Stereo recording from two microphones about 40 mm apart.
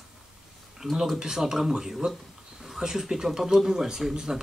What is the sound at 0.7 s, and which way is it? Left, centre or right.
Speech, centre.